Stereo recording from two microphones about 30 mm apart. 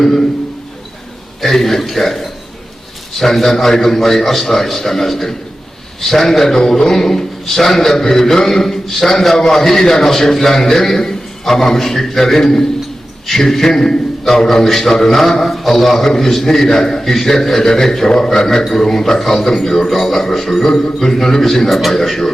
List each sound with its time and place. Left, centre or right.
0.0 s a man's voice: centre
1.4 s a sound: centre
3.2 s a man's voice: centre
21.7 s a man's voice: centre
21.9 s a man's voice: centre